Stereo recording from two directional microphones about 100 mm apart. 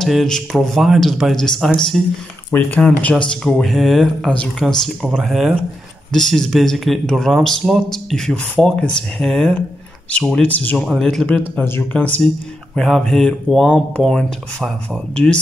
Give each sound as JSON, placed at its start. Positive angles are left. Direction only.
{"t": 0.0, "sound": "speech", "side_deg": 0}
{"t": 10.8, "sound": "speech", "side_deg": 5}
{"t": 11.5, "sound": "speech", "side_deg": 20}
{"t": 12.7, "sound": "speech", "side_deg": 5}